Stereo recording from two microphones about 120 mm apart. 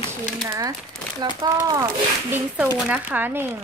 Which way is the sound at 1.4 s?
30° right (ahead or behind).